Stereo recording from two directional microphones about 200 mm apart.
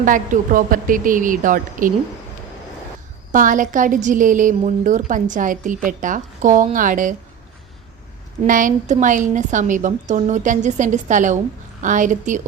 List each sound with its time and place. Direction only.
0.0 s a woman's voice: 40° right (ahead or behind)
3.3 s a woman's voice: 40° right (ahead or behind)
8.4 s a woman's voice: 40° right (ahead or behind)